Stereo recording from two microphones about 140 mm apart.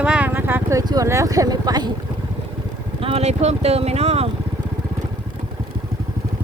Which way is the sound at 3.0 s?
50° right (ahead or behind).